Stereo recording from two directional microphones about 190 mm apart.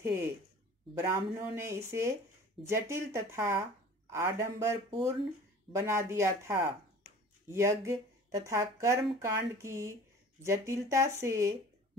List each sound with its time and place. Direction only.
0.0 s speech: 15° right (ahead or behind)